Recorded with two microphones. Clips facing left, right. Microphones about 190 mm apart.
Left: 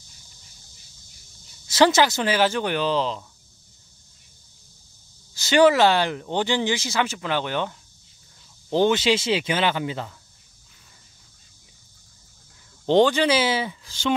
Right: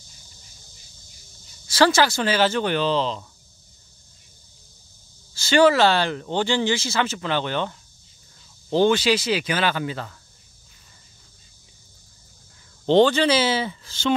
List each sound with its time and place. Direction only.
1.7 s speech: 20° left (ahead or behind)
5.3 s speech: 20° left (ahead or behind)
12.8 s speech: 15° left (ahead or behind)